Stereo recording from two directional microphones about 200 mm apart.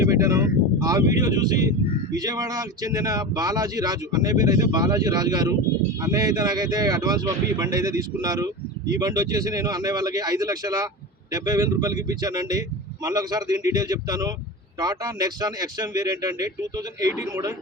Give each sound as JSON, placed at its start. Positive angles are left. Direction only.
{"t": 0.0, "sound": "speech", "side_deg": -15}